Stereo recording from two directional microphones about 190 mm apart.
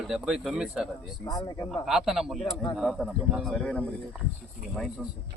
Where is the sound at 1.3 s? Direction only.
20° left (ahead or behind).